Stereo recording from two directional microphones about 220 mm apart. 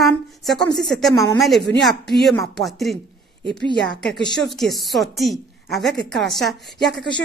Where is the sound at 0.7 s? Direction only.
Centre (ahead or behind).